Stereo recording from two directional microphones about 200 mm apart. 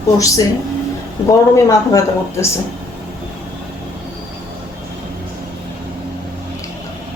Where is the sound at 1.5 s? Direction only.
15° left (ahead or behind).